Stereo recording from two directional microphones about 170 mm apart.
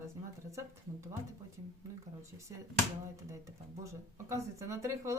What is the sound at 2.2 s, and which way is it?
Speech, 15° right (ahead or behind).